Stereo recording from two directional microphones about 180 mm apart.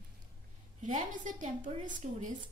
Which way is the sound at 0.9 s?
45° right (ahead or behind).